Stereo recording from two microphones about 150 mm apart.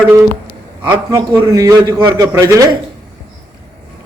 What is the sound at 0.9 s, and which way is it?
A man's voice, 30° right (ahead or behind).